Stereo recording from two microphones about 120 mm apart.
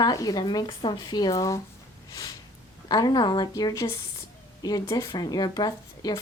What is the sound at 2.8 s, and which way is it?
A woman's voice, 35° left (ahead or behind).